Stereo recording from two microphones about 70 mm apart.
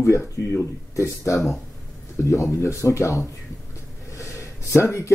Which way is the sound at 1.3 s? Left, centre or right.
Centre.